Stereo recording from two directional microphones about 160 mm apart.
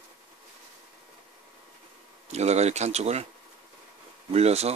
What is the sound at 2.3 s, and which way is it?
Speech, 45° right (ahead or behind).